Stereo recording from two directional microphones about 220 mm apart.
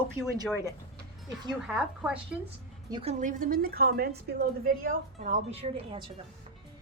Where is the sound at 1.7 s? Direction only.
5° right (ahead or behind).